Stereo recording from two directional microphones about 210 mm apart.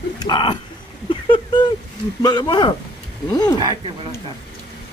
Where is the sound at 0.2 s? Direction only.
20° left (ahead or behind).